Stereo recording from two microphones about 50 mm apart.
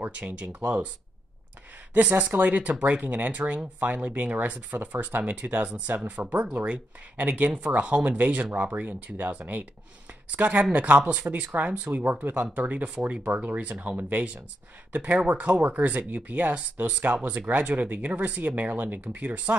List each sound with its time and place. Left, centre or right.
0.0 s speech: right
2.0 s speech: right
7.2 s speech: right